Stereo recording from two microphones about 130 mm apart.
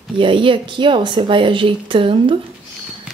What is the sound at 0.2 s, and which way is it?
A woman's voice, 40° right (ahead or behind).